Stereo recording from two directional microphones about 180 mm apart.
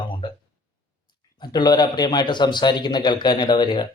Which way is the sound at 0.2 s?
25° left (ahead or behind).